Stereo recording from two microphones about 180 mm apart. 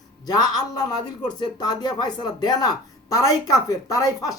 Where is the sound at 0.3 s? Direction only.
20° left (ahead or behind).